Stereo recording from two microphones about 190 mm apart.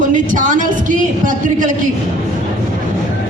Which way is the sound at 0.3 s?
40° right (ahead or behind).